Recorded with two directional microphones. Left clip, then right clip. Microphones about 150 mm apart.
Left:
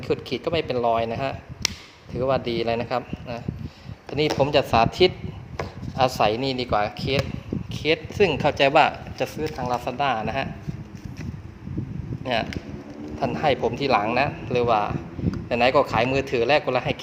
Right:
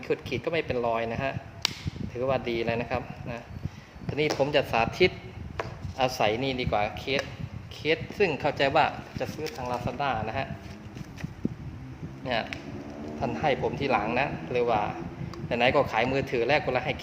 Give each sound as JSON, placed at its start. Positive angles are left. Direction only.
{"t": 0.1, "sound": "speech", "side_deg": 30}
{"t": 12.2, "sound": "speech", "side_deg": 35}